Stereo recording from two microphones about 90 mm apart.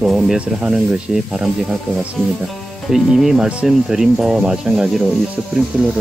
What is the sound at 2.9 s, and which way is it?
Speech, 5° right (ahead or behind).